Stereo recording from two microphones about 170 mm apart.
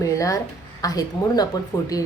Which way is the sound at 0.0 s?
20° left (ahead or behind).